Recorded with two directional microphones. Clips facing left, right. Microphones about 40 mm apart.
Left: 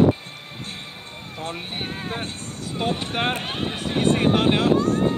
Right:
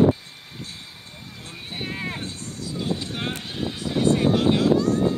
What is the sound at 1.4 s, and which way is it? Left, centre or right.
Speech, left.